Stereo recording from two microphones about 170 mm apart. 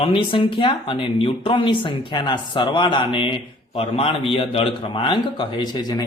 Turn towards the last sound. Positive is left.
turn(degrees=25)  # may be behind; listen again after turning